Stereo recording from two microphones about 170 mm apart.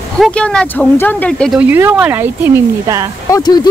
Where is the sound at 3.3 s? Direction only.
25° left (ahead or behind).